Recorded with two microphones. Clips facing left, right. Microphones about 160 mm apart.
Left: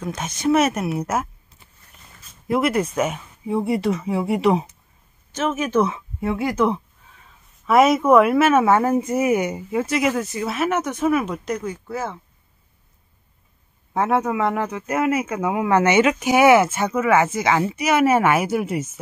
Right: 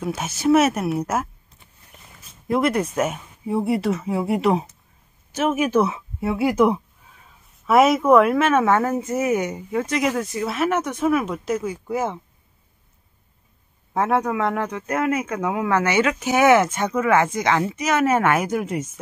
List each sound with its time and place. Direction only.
0.0 s speech: 5° right (ahead or behind)
7.6 s speech: centre (ahead or behind); by 12.2 s 15° right (ahead or behind)
13.9 s speech: centre (ahead or behind)